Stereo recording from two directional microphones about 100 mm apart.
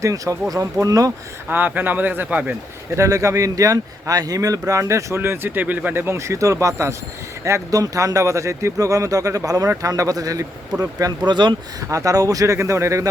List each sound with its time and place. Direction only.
0.0 s speech: 30° right (ahead or behind)
1.5 s speech: 20° right (ahead or behind)
2.9 s speech: 30° right (ahead or behind)
11.3 s speech: 50° right (ahead or behind)
11.9 s speech: 35° right (ahead or behind)